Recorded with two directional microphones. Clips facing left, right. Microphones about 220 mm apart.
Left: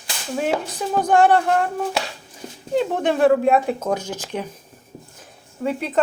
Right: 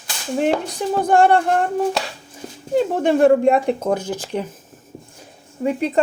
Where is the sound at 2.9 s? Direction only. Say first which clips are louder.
Right 3 dB; 10° right (ahead or behind).